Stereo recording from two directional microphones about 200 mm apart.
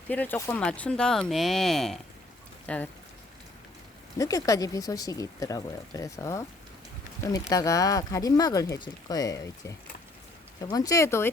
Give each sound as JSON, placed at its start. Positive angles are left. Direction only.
{"t": 0.1, "sound": "speech", "side_deg": 10}
{"t": 4.2, "sound": "speech", "side_deg": 15}